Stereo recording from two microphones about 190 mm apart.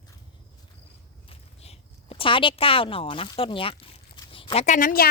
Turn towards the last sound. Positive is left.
turn(degrees=50)  # may be behind; listen again after turning